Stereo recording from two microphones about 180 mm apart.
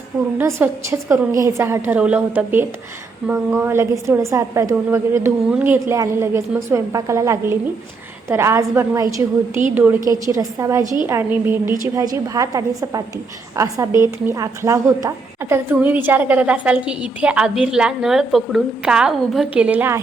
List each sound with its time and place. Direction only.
0.3 s a woman's voice: 15° right (ahead or behind)